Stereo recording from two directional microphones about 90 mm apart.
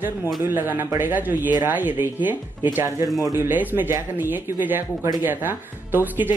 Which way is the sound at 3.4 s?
20° right (ahead or behind).